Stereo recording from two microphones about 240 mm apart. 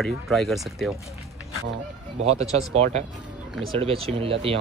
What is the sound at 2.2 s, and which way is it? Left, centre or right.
Speech, right.